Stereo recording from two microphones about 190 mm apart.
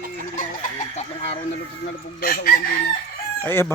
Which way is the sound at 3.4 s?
10° left (ahead or behind).